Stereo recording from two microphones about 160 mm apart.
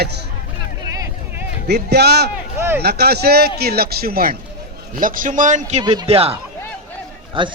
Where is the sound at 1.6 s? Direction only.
90° right.